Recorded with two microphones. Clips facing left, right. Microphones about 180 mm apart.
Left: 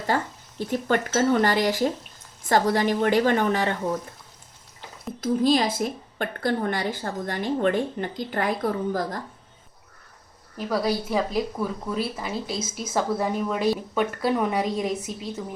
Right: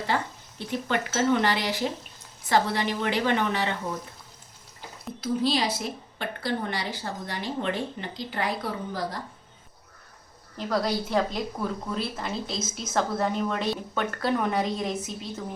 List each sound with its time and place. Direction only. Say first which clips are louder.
0.1 s a woman's voice: left 4 dB; 45° left (ahead or behind)
5.2 s a woman's voice: left 5 dB; 50° left (ahead or behind)
10.7 s a woman's voice: left 2 dB; 5° left (ahead or behind)